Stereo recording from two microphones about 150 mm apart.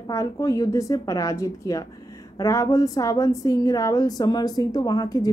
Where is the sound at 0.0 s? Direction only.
25° left (ahead or behind).